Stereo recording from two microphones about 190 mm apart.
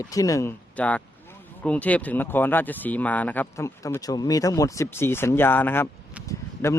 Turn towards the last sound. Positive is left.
turn(degrees=15)  # may be behind; listen again after turning